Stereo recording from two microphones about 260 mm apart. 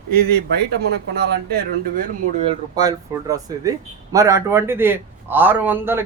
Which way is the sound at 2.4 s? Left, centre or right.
Centre.